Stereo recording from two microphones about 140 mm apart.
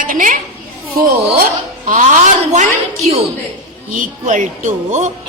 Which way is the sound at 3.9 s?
65° right (ahead or behind).